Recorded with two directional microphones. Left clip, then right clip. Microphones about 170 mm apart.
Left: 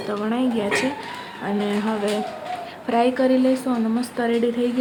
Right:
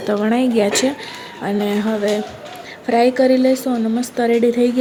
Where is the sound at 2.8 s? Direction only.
20° right (ahead or behind).